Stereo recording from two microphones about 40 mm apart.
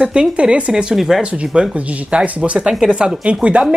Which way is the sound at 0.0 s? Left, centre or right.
Right.